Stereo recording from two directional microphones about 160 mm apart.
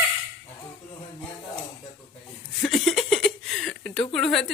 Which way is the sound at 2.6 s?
Centre (ahead or behind).